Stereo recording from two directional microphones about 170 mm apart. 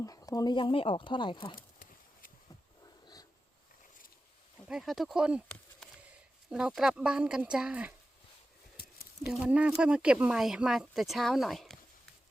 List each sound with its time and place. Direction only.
0.0 s speech: 20° left (ahead or behind)
1.5 s horse: 55° left (ahead or behind)
4.7 s speech: centre (ahead or behind)
6.5 s speech: 5° right (ahead or behind)
9.2 s speech: 5° right (ahead or behind)